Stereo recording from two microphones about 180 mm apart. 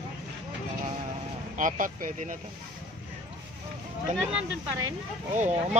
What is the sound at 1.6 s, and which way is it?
Speech, 45° right (ahead or behind).